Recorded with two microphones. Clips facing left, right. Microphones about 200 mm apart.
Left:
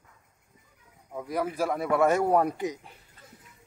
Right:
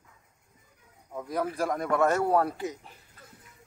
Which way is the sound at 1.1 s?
10° left (ahead or behind).